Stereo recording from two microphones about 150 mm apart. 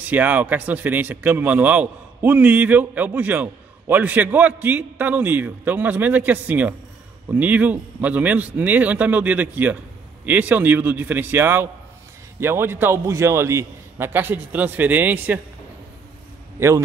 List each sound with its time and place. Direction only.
0.0 s speech: 10° right (ahead or behind)
16.5 s a man's voice: 20° right (ahead or behind)